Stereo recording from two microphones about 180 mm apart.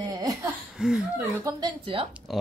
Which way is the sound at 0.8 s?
5° right (ahead or behind).